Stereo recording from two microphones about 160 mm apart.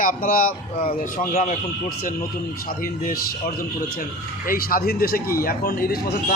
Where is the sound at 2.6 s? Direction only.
60° left (ahead or behind).